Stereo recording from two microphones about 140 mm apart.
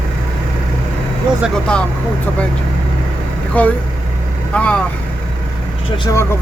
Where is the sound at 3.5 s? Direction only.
10° left (ahead or behind).